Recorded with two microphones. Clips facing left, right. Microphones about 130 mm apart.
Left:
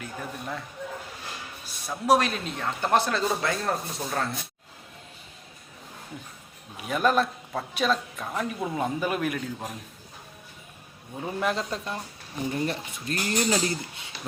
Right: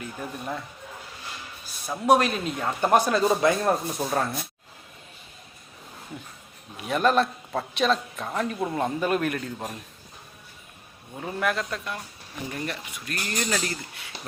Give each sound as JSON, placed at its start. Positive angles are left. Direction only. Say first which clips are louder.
{"t": 0.0, "sound": "a man's voice", "louder": "right 1 dB", "side_deg": -5}
{"t": 1.9, "sound": "a man's voice", "louder": "right 2 dB", "side_deg": 0}
{"t": 6.7, "sound": "a man's voice", "louder": "right 2 dB", "side_deg": 0}
{"t": 11.3, "sound": "speech", "louder": "right 1 dB", "side_deg": 25}